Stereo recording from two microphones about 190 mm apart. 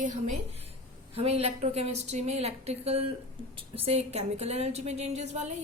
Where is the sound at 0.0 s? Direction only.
35° right (ahead or behind).